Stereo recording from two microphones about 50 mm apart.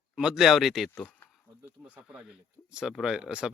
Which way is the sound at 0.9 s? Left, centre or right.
Left.